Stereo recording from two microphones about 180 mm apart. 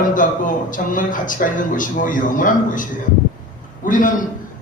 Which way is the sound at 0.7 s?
45° left (ahead or behind).